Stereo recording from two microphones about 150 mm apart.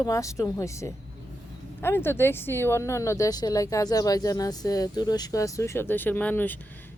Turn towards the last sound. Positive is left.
turn(degrees=10)  # may be behind; listen again after turning